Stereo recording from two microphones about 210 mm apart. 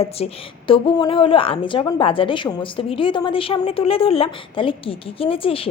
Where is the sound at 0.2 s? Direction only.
30° left (ahead or behind).